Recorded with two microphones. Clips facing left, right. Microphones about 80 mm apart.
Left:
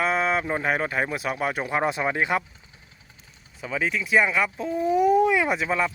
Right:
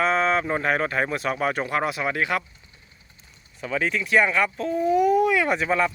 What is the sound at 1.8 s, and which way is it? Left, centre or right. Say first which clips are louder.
Speech: left 1 dB; left.